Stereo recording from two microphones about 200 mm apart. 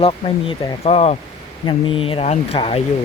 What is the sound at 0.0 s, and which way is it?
Speech, 30° left (ahead or behind).